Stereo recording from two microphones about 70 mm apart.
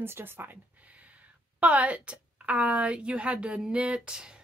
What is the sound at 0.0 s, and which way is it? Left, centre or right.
Speech, right.